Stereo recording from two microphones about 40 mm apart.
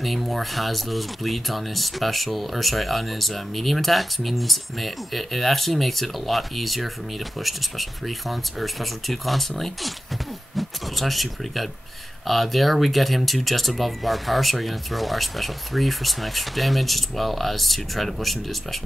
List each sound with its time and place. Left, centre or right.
0.0 s speech: centre